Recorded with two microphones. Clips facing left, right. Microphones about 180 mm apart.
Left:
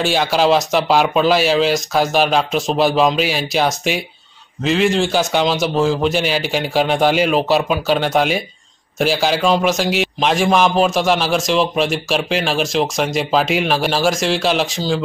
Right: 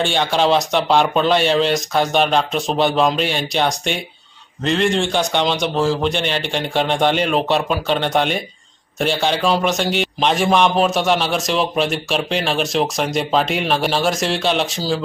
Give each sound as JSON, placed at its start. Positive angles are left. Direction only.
{"t": 0.0, "sound": "a man's voice", "side_deg": 5}